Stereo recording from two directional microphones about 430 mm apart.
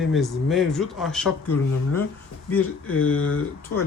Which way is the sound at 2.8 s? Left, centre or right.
Left.